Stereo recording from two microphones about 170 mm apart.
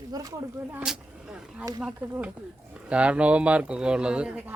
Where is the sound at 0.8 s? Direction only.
5° right (ahead or behind).